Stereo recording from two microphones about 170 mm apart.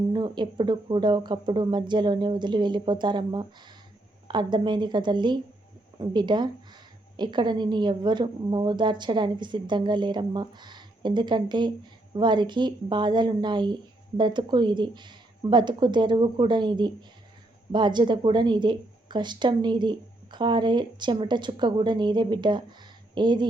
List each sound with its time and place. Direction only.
0.1 s a woman's voice: 25° right (ahead or behind)